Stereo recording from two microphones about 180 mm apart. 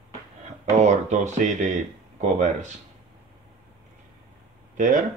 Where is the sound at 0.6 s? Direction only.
40° right (ahead or behind).